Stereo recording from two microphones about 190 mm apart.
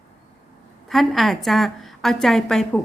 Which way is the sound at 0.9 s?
Centre (ahead or behind).